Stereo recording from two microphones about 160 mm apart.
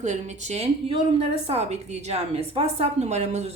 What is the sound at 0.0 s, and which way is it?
A woman's voice, 45° right (ahead or behind).